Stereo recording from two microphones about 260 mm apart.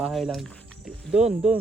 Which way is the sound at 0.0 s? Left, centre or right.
Centre.